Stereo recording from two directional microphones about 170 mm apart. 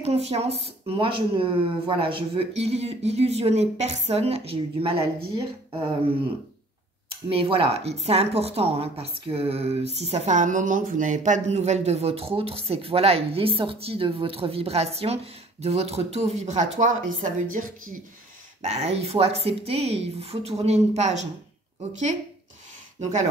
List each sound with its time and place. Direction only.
0.0 s a woman's voice: 35° right (ahead or behind)
7.2 s a woman's voice: 35° right (ahead or behind)
17.5 s speech: 55° right (ahead or behind)
18.7 s a woman's voice: 35° right (ahead or behind)